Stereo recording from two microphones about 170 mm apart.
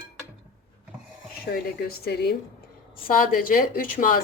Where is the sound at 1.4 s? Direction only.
65° left (ahead or behind).